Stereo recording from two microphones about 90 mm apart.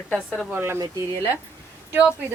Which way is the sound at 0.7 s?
45° right (ahead or behind).